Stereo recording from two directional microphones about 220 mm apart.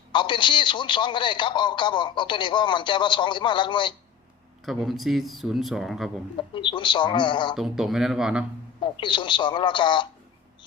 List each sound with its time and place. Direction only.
0.1 s speech: 20° left (ahead or behind)
4.6 s speech: centre (ahead or behind)
6.5 s speech: 20° left (ahead or behind)
7.5 s speech: centre (ahead or behind)
8.8 s speech: 20° left (ahead or behind)